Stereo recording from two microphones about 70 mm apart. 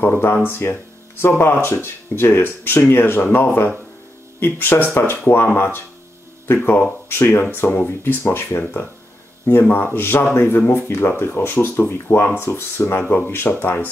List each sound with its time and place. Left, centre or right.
0.5 s speech: left
8.0 s speech: left